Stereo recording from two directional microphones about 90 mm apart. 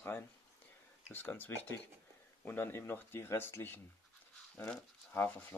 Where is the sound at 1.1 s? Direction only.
20° left (ahead or behind).